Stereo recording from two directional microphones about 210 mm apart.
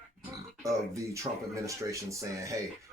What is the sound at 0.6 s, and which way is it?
Speech, 15° right (ahead or behind).